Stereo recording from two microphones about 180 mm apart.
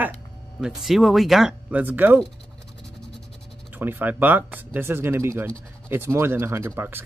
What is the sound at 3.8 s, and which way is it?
Speech, 10° right (ahead or behind).